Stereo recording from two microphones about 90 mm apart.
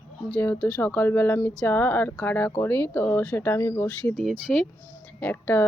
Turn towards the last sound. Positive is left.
turn(degrees=15)  # may be behind; listen again after turning